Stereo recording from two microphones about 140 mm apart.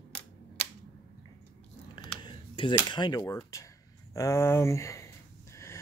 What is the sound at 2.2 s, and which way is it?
Speech, 35° left (ahead or behind).